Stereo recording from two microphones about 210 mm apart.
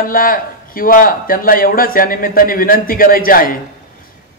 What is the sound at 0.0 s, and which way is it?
A man's voice, 40° left (ahead or behind).